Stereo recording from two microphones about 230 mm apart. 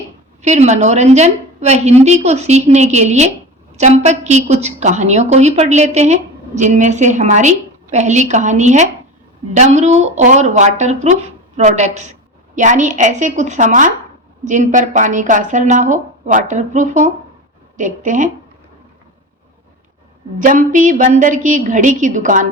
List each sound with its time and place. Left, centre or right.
0.4 s a woman's voice: right
20.4 s a woman's voice: right